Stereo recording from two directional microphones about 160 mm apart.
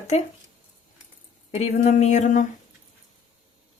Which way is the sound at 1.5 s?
45° left (ahead or behind).